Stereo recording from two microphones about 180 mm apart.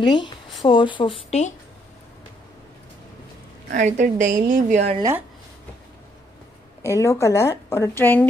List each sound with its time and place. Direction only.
0.0 s speech: 25° left (ahead or behind)
3.7 s a woman's voice: 45° right (ahead or behind)
6.8 s a woman's voice: 15° left (ahead or behind)